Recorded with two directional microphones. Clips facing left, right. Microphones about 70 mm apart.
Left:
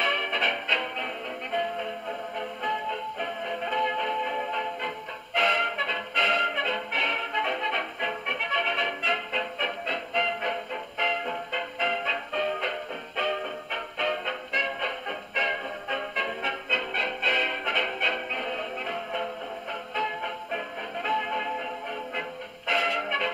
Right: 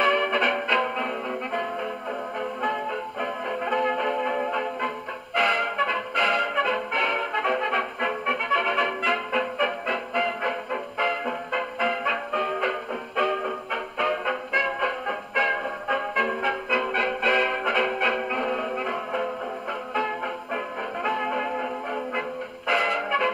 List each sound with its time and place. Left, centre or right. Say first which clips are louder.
0.0 s music: right 5 dB; right
2.6 s music: right 1 dB; right
20.5 s music: right 3 dB; right
22.7 s music: right 3 dB; right